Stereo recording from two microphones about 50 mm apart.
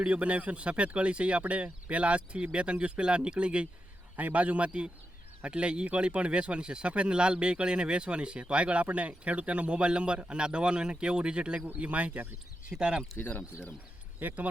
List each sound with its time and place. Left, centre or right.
0.1 s speech: right
11.6 s speech: right
12.7 s speech: centre
13.1 s speech: left
14.2 s speech: right